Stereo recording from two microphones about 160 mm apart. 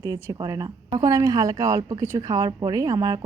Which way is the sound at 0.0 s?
20° right (ahead or behind).